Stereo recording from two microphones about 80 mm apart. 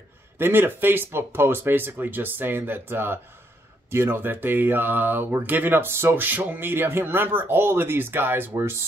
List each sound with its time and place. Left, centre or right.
0.4 s speech: right